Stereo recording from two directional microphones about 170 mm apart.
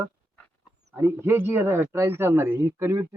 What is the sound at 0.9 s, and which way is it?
Speech, 15° right (ahead or behind).